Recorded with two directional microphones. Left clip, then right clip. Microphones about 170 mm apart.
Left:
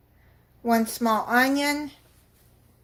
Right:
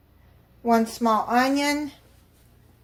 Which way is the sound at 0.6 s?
20° left (ahead or behind).